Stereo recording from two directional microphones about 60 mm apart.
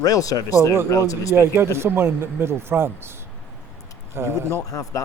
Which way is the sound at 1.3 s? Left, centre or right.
Right.